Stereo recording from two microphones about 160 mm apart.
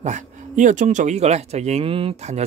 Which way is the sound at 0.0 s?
50° right (ahead or behind).